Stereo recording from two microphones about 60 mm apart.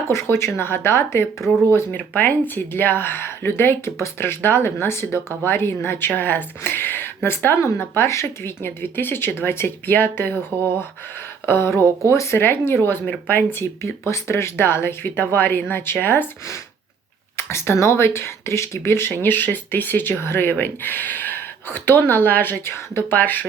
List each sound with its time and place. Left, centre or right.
0.1 s speech: left
2.0 s speech: left
8.6 s speech: left
11.4 s speech: left
12.4 s speech: left
17.3 s speech: left
22.6 s speech: left